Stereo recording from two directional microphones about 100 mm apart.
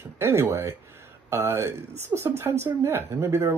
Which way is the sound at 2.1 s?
20° right (ahead or behind).